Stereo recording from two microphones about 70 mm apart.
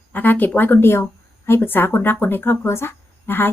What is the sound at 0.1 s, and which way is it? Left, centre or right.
A woman's voice, left.